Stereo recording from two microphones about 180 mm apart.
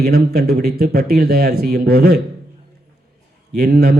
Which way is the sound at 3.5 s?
60° right (ahead or behind).